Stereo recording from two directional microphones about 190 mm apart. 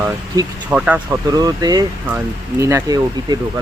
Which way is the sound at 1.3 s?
20° right (ahead or behind).